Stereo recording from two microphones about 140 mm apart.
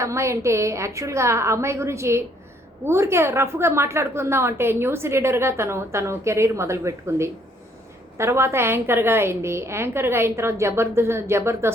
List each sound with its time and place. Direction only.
0.0 s a woman's voice: 20° right (ahead or behind)